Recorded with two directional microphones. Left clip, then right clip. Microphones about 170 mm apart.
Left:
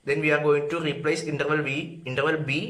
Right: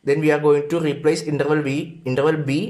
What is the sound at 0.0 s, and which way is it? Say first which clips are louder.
Speech: right 5 dB; 30° right (ahead or behind).